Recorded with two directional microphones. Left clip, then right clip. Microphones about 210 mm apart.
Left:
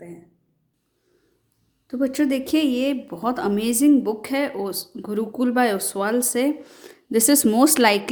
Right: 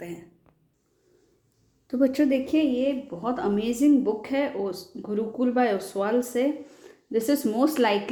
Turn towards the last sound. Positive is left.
turn(degrees=25)  # may be behind; listen again after turning